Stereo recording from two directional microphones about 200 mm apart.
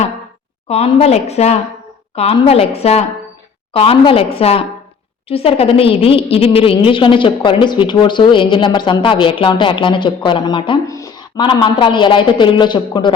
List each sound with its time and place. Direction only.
0.7 s a woman's voice: 30° left (ahead or behind)